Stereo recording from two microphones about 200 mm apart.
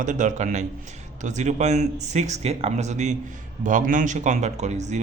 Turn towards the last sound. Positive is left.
turn(degrees=-35)  # may be behind; listen again after turning